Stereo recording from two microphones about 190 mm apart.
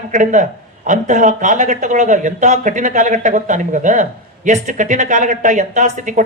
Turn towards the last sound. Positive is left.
turn(degrees=-40)  # may be behind; listen again after turning